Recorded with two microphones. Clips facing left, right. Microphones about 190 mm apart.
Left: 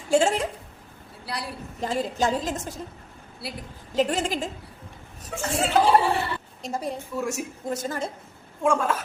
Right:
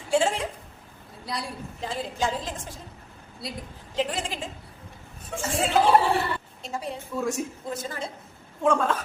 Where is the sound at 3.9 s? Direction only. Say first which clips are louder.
Left 5 dB; 45° left (ahead or behind).